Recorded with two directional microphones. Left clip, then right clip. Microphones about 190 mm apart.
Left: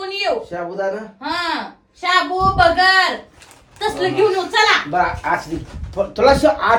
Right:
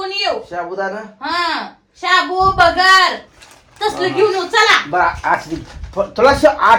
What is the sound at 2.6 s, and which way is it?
Speech, centre (ahead or behind).